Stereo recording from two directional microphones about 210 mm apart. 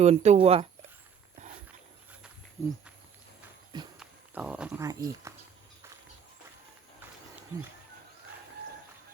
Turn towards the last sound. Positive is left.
turn(degrees=-10)  # may be behind; listen again after turning